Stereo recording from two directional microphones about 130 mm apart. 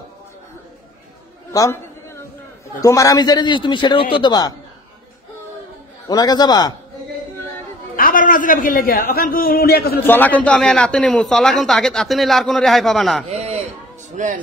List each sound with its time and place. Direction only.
1.5 s a sound: 25° left (ahead or behind)
2.8 s a man's voice: 25° left (ahead or behind)
6.0 s a man's voice: 30° left (ahead or behind)
7.9 s a man's voice: 90° left
10.0 s a man's voice: 15° left (ahead or behind)
13.3 s a sound: 55° right (ahead or behind)
14.1 s speech: 75° right (ahead or behind)